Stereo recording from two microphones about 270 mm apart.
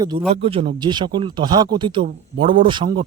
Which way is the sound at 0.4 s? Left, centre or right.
Centre.